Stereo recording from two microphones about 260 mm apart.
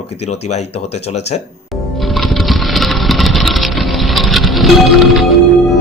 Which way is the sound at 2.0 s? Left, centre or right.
Centre.